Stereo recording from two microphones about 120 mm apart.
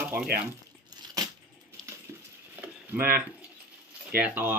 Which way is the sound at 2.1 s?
20° right (ahead or behind).